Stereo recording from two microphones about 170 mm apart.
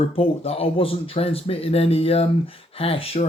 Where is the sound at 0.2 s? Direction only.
35° left (ahead or behind).